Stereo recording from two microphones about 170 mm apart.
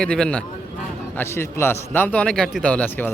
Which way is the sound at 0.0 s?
5° left (ahead or behind).